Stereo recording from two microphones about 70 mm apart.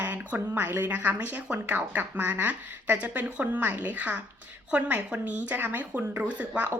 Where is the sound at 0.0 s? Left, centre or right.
Right.